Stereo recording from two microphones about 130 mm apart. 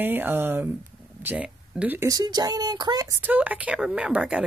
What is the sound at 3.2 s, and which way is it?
Speech, 10° right (ahead or behind).